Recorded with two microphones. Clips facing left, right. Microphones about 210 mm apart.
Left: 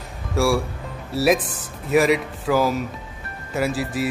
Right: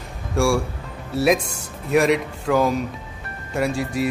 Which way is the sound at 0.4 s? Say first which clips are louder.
Even; centre (ahead or behind).